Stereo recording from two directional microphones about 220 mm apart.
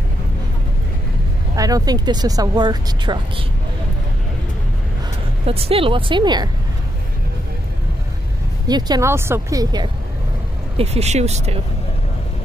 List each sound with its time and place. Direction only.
1.6 s speech: 15° right (ahead or behind)
5.5 s speech: 25° right (ahead or behind)
8.6 s speech: 20° right (ahead or behind)
10.8 s speech: 30° right (ahead or behind)